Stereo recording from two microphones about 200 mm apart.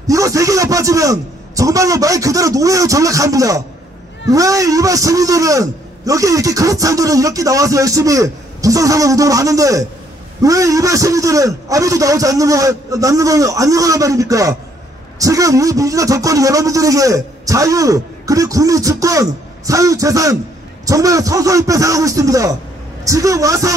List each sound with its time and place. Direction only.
0.0 s a man's voice: 15° right (ahead or behind)